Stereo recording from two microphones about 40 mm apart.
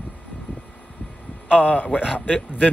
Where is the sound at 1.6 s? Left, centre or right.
Left.